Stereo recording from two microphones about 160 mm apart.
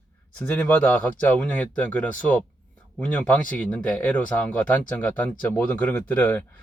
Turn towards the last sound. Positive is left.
turn(degrees=10)  # may be behind; listen again after turning